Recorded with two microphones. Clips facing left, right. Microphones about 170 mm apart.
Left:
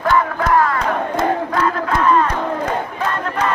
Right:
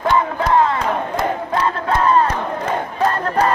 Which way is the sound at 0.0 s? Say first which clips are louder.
Left 1 dB; 20° right (ahead or behind).